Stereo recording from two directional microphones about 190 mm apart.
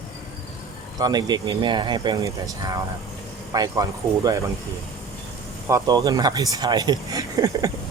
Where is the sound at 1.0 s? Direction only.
20° right (ahead or behind).